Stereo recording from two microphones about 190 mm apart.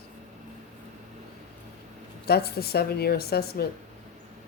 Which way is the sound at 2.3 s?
55° left (ahead or behind).